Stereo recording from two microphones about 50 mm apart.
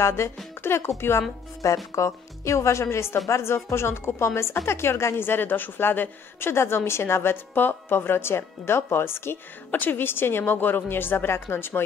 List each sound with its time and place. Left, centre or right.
0.0 s speech: left
0.6 s speech: left
1.6 s speech: left
9.7 s speech: left